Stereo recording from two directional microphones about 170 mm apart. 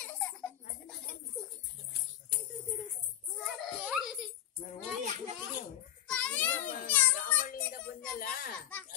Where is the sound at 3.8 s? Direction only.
5° right (ahead or behind).